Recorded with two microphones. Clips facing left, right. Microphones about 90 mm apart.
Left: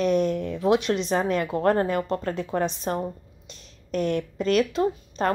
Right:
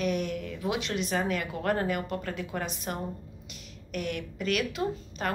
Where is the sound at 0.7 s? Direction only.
50° left (ahead or behind).